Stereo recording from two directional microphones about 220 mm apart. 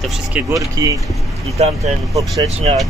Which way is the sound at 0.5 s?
15° right (ahead or behind).